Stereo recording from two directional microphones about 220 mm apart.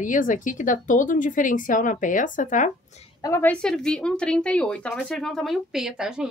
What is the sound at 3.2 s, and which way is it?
A woman's voice, 10° left (ahead or behind).